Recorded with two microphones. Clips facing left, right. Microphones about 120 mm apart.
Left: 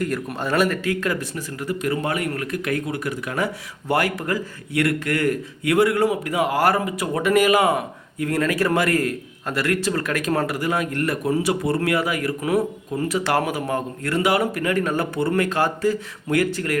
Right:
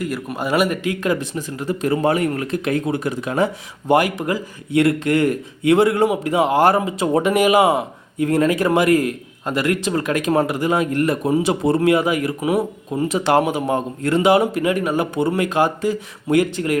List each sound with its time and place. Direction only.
0.0 s speech: 5° right (ahead or behind); by 16.7 s 20° right (ahead or behind)